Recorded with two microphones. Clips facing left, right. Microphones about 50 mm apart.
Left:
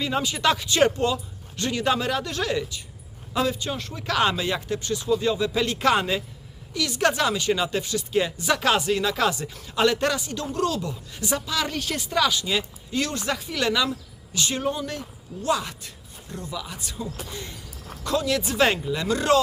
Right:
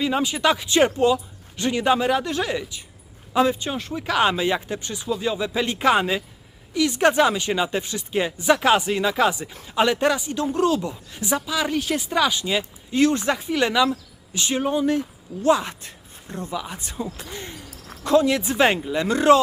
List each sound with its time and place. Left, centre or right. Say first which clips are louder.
0.0 s speech: right 3 dB; centre